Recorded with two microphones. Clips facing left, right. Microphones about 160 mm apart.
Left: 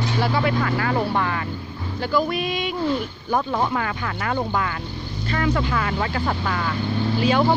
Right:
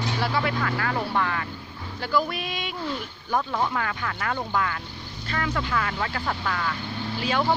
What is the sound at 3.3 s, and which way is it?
Speech, 25° left (ahead or behind).